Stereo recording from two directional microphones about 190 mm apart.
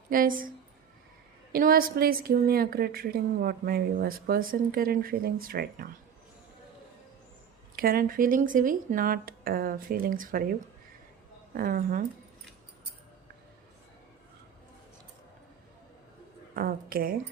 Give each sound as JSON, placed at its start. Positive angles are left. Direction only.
{"t": 0.1, "sound": "a woman's voice", "side_deg": -45}
{"t": 1.5, "sound": "a woman's voice", "side_deg": -50}
{"t": 7.8, "sound": "a woman's voice", "side_deg": -50}
{"t": 11.5, "sound": "a woman's voice", "side_deg": -50}
{"t": 16.6, "sound": "a woman's voice", "side_deg": -50}